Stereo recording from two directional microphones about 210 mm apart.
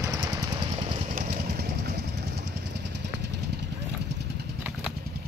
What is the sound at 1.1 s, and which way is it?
Vehicle, 45° right (ahead or behind).